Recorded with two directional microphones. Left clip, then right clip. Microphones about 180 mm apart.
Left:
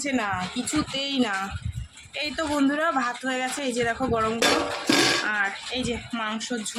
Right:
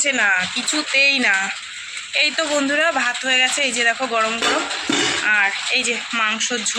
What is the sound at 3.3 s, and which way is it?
Speech, 15° left (ahead or behind).